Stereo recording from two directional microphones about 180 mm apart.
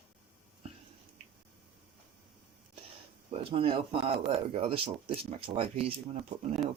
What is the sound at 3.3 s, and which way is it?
Speech, 30° right (ahead or behind).